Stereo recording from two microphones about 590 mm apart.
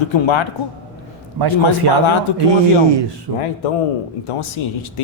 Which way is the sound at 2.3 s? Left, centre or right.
Left.